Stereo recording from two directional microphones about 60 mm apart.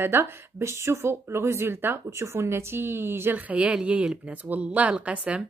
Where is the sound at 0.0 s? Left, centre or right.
Right.